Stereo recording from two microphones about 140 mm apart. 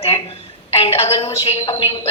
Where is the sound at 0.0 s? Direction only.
45° left (ahead or behind).